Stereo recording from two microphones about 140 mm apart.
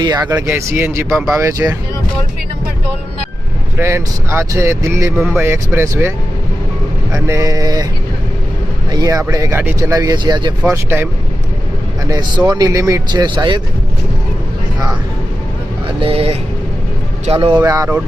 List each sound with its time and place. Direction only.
0.0 s speech: 25° right (ahead or behind)
3.8 s speech: 15° right (ahead or behind)
5.1 s speech: centre (ahead or behind)
5.4 s speech: 15° right (ahead or behind)
8.9 s speech: 25° right (ahead or behind)
10.0 s speech: 30° right (ahead or behind)
10.7 s speech: 15° right (ahead or behind)
12.5 s speech: 30° right (ahead or behind)
16.0 s speech: 40° right (ahead or behind)
17.6 s speech: 25° right (ahead or behind)